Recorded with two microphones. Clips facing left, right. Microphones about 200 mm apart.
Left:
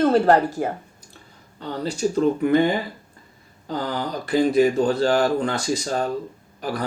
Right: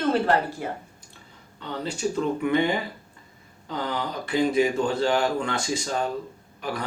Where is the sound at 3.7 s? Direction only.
35° left (ahead or behind).